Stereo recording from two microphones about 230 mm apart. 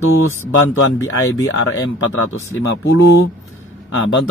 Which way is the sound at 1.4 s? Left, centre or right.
Left.